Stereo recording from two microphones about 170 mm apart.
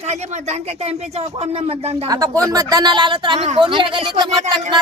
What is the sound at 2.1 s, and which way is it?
Speech, 20° right (ahead or behind).